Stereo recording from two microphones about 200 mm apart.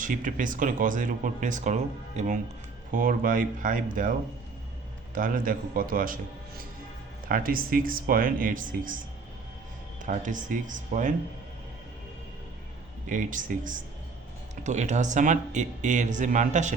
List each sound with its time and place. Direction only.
0.0 s speech: 40° right (ahead or behind)
5.1 s speech: 45° right (ahead or behind)
7.3 s speech: 45° right (ahead or behind)
10.0 s speech: 40° right (ahead or behind)
13.1 s speech: 40° right (ahead or behind)